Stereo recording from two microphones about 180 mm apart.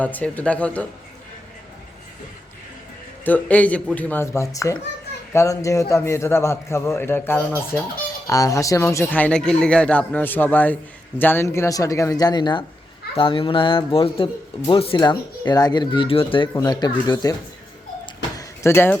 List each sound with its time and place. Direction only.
0.0 s a man's voice: 10° left (ahead or behind)
3.2 s a man's voice: 10° left (ahead or behind)
18.0 s a sound: 15° left (ahead or behind)